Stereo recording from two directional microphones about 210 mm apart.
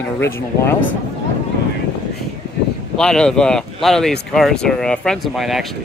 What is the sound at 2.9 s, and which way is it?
Speech, 5° left (ahead or behind).